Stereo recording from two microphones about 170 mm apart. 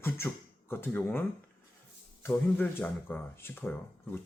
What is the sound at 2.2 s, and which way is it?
Speech, 10° left (ahead or behind).